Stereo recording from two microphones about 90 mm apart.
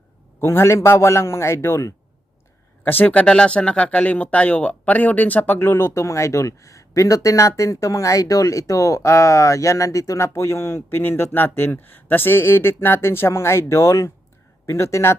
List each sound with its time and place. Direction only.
0.3 s speech: 25° left (ahead or behind)